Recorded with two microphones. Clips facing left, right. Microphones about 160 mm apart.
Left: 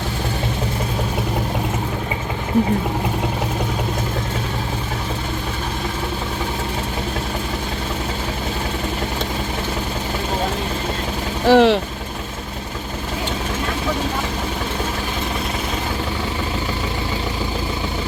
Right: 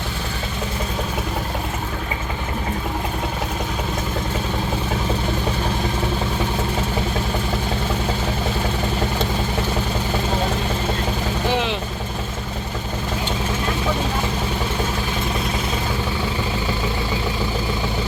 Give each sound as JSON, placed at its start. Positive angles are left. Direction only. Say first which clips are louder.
{"t": 11.4, "sound": "vehicle", "louder": "left 12 dB", "side_deg": 70}